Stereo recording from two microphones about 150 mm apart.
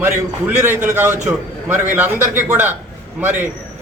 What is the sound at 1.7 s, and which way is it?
Speech, 55° right (ahead or behind).